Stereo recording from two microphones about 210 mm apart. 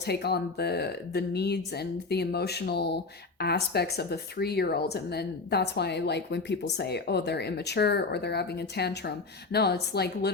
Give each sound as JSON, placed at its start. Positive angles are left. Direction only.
{"t": 0.0, "sound": "speech", "side_deg": 50}